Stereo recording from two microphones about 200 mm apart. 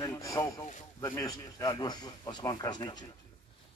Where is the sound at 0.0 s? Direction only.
15° left (ahead or behind).